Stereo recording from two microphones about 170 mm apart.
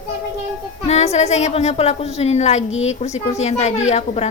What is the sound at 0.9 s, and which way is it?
Speech, 40° left (ahead or behind).